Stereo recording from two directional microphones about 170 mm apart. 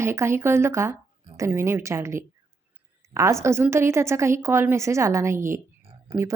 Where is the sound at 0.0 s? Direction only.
15° right (ahead or behind).